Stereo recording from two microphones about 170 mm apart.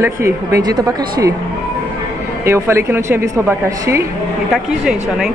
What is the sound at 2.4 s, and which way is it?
A woman's voice, 15° right (ahead or behind).